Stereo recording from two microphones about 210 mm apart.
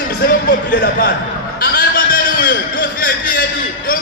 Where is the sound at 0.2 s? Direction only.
50° left (ahead or behind).